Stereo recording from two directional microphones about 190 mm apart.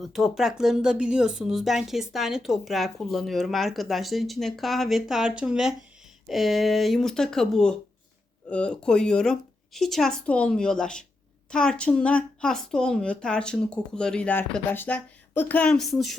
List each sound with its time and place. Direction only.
0.0 s speech: centre (ahead or behind)